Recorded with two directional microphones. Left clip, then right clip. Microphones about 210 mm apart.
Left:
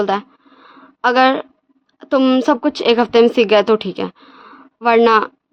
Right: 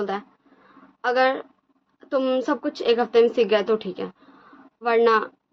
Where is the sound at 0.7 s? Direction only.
55° left (ahead or behind).